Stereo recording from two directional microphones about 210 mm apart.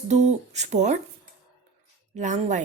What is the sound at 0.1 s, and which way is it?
Speech, 30° right (ahead or behind).